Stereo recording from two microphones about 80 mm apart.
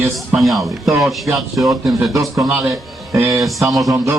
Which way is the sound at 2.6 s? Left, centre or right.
Right.